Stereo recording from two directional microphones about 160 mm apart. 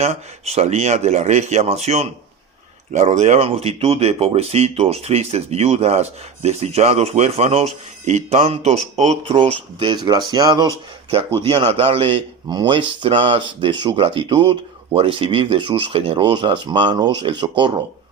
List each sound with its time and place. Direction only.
0.0 s speech: 40° right (ahead or behind)